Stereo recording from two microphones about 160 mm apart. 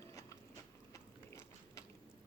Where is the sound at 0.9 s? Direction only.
20° left (ahead or behind).